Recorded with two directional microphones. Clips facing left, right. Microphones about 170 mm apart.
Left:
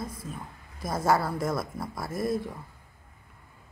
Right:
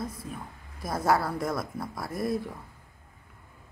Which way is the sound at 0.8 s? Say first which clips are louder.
Even; centre (ahead or behind).